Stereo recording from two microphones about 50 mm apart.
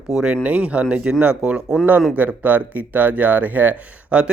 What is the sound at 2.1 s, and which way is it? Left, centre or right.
Speech, right.